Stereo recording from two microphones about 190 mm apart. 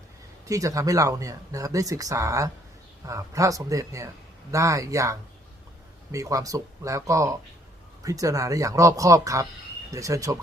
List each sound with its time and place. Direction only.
0.4 s speech: 15° right (ahead or behind)